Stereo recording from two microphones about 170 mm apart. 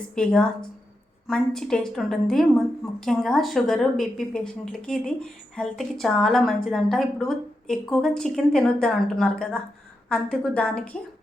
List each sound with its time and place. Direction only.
0.1 s a woman's voice: 5° left (ahead or behind)